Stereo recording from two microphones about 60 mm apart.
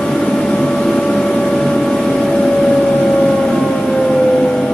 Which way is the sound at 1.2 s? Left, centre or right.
Centre.